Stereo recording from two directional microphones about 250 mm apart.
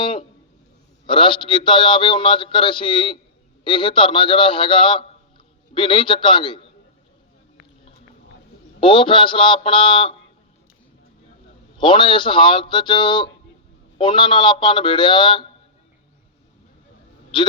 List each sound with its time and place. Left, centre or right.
0.0 s a man's voice: centre
8.8 s a man's voice: centre
11.8 s a man's voice: centre
17.3 s speech: centre